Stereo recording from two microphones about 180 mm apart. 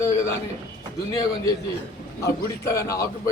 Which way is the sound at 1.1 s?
20° left (ahead or behind).